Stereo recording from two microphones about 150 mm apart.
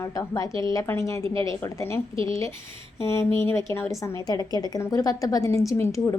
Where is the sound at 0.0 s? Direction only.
20° left (ahead or behind).